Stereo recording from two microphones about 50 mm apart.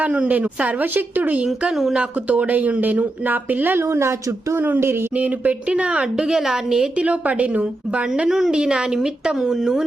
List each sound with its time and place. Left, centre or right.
0.0 s speech: right
1.9 s speech: right
3.8 s speech: right
4.6 s a woman's voice: right; by 6.8 s centre
6.9 s a woman's voice: right
8.3 s a woman's voice: centre